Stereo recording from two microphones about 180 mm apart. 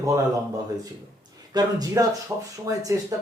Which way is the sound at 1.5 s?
20° right (ahead or behind).